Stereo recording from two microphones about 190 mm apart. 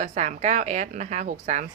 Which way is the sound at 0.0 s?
40° right (ahead or behind).